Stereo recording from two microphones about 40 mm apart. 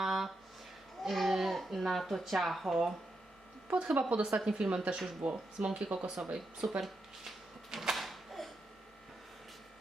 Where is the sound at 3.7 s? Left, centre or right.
Right.